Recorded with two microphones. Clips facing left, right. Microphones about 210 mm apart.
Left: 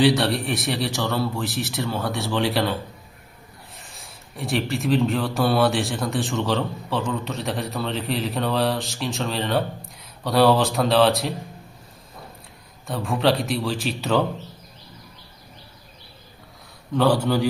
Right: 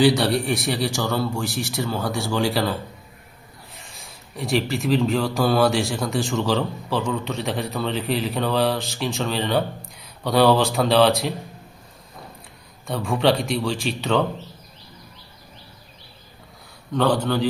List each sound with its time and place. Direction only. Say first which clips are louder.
0.0 s speech: right 1 dB; centre (ahead or behind)
3.8 s speech: even; centre (ahead or behind)
12.9 s speech: right 1 dB; centre (ahead or behind)
16.9 s speech: left 1 dB; 10° left (ahead or behind)